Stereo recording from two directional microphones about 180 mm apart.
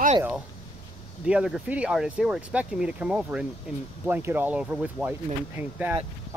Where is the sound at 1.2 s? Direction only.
5° right (ahead or behind).